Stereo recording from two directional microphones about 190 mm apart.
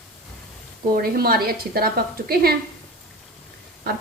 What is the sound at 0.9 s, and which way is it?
A woman's voice, 50° right (ahead or behind).